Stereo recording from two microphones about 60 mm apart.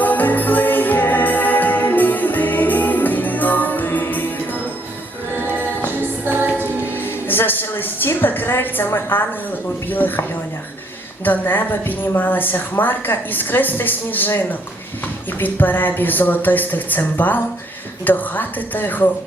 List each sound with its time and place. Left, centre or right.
0.0 s music: left
6.0 s music: right
6.9 s music: left
9.1 s a woman's voice: left
11.3 s a woman's voice: left